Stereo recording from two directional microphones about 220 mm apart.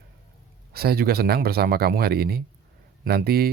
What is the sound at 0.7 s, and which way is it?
Speech, 45° right (ahead or behind).